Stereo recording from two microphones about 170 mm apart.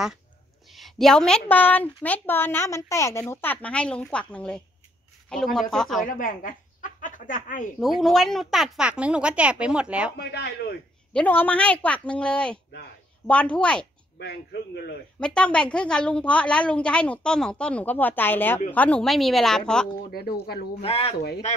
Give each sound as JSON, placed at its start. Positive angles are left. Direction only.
{"t": 0.7, "sound": "a woman's voice", "side_deg": 0}
{"t": 6.0, "sound": "speech", "side_deg": 50}
{"t": 7.8, "sound": "speech", "side_deg": 0}
{"t": 10.1, "sound": "speech", "side_deg": 70}
{"t": 11.1, "sound": "a woman's voice", "side_deg": 10}
{"t": 14.1, "sound": "speech", "side_deg": 75}
{"t": 15.1, "sound": "a woman's voice", "side_deg": 5}
{"t": 20.1, "sound": "speech", "side_deg": 65}
{"t": 20.8, "sound": "speech", "side_deg": 35}